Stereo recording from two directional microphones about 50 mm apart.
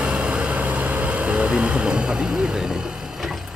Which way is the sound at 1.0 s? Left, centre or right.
Right.